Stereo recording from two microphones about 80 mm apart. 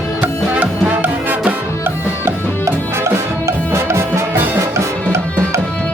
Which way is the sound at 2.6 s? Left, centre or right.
Right.